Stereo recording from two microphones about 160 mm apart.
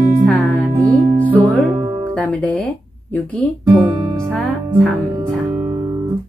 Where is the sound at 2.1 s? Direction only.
10° left (ahead or behind).